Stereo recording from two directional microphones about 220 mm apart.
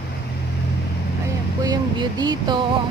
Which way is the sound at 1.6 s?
20° right (ahead or behind).